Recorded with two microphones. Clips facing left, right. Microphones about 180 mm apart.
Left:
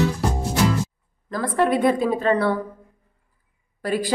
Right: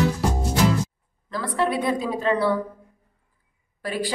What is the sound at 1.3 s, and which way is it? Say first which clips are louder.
A woman's voice: left 4 dB; 50° left (ahead or behind).